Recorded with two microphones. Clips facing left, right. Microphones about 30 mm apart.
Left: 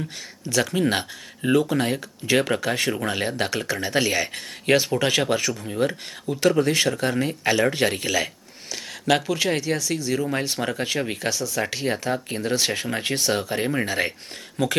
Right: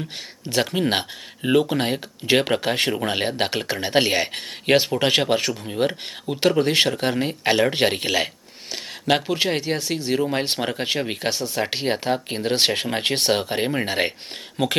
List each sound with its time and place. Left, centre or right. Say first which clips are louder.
0.4 s speech: even; right
10.6 s speech: right 1 dB; right